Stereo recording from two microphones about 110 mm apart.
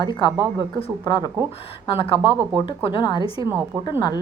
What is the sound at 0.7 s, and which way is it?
A woman's voice, 55° left (ahead or behind).